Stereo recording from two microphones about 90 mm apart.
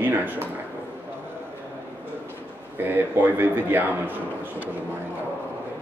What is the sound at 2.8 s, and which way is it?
A man's voice, 25° right (ahead or behind).